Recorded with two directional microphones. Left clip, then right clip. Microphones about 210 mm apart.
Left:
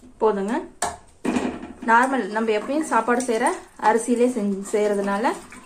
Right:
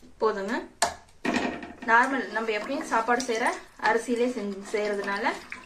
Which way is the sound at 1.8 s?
40° left (ahead or behind).